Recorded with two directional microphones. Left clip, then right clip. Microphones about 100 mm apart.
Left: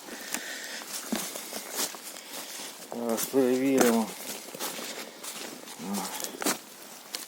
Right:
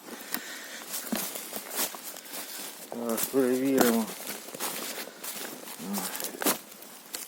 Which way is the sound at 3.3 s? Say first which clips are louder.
Left 1 dB; 25° left (ahead or behind).